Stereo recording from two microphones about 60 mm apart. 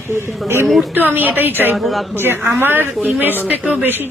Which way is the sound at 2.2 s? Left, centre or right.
Right.